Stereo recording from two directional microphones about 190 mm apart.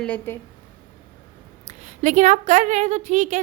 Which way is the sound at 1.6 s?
40° right (ahead or behind).